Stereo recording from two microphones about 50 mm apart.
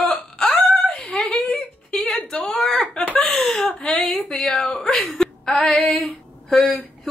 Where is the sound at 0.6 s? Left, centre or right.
Centre.